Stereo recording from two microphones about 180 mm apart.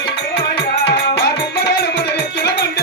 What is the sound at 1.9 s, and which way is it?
Music, 65° left (ahead or behind).